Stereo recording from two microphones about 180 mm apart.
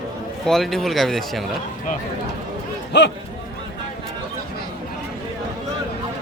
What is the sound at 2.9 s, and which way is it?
Speech, 70° left (ahead or behind).